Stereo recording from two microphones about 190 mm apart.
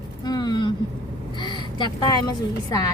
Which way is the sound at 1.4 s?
25° left (ahead or behind).